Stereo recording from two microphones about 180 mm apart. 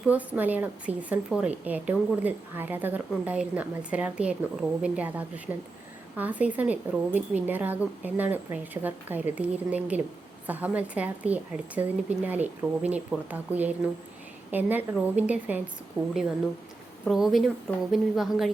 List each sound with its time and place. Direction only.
0.0 s a woman's voice: 10° right (ahead or behind)
16.0 s a woman's voice: 20° right (ahead or behind)
17.1 s a woman's voice: centre (ahead or behind)